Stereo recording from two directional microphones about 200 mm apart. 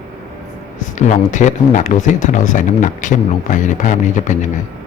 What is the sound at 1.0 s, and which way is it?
Speech, 35° left (ahead or behind).